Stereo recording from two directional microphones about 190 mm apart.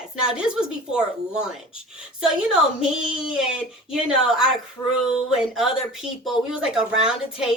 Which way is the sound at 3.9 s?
5° right (ahead or behind).